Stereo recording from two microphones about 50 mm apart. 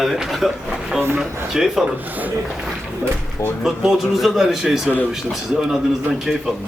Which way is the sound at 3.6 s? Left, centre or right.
Centre.